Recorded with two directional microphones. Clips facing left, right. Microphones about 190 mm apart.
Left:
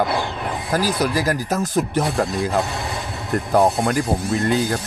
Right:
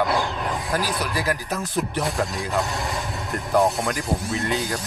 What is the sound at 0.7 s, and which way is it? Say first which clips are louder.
Speech: left 8 dB; 40° left (ahead or behind).